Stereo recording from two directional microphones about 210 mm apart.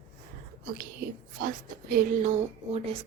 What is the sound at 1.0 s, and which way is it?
Speech, 45° right (ahead or behind).